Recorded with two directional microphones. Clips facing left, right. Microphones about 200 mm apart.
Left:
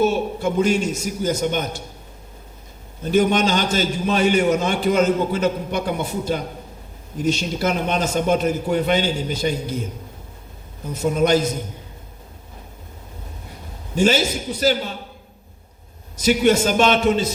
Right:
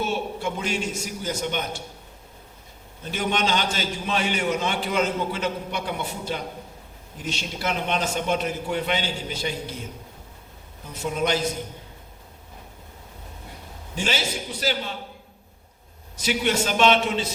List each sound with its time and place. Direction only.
0.0 s a man's voice: 45° left (ahead or behind)
3.0 s a man's voice: 45° left (ahead or behind)
10.8 s a man's voice: 45° left (ahead or behind)
13.9 s a man's voice: 45° left (ahead or behind)
16.1 s a man's voice: 45° left (ahead or behind)